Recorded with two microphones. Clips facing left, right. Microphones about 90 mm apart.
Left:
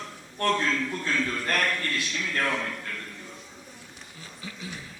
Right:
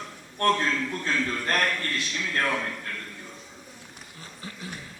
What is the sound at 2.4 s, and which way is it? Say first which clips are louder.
Speech: right 1 dB; 10° right (ahead or behind).